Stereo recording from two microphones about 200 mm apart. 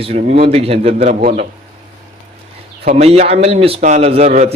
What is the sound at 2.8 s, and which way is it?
A man's voice, 35° right (ahead or behind).